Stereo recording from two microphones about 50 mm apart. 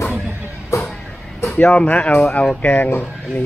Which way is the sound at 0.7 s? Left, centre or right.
Left.